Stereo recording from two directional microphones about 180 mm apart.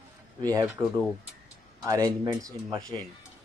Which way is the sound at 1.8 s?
20° right (ahead or behind).